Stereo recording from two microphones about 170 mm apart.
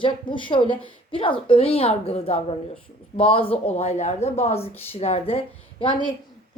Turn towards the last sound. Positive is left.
turn(degrees=30)  # may be behind; listen again after turning